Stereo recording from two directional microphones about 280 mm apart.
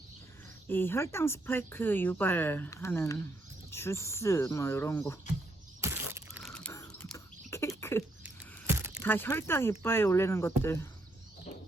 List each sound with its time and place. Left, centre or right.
0.7 s speech: centre
5.8 s a sound: centre
8.2 s biting: centre
9.0 s speech: centre